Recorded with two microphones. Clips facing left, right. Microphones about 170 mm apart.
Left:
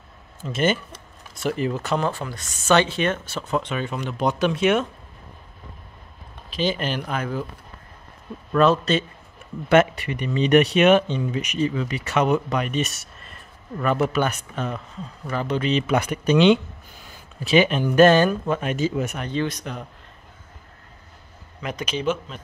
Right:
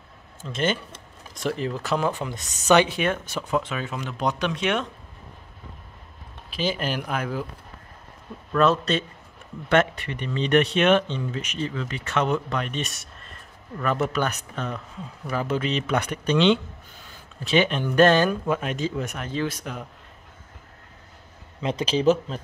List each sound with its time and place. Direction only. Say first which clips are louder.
0.4 s speech: left 3 dB; 5° left (ahead or behind)
2.0 s speech: even; 20° right (ahead or behind); by 4.8 s 5° left (ahead or behind)
6.5 s speech: left 2 dB; 5° right (ahead or behind)
8.5 s speech: left 3 dB; centre (ahead or behind)
21.5 s speech: right 4 dB; 30° right (ahead or behind)